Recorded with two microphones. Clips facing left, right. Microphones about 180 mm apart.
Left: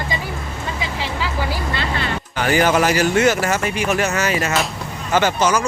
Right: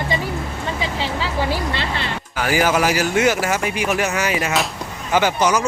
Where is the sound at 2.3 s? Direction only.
5° right (ahead or behind).